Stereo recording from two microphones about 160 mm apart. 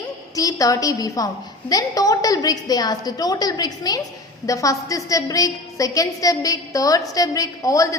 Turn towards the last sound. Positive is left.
turn(degrees=20)  # may be behind; listen again after turning